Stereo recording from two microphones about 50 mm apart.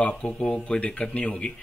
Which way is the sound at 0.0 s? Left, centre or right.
Left.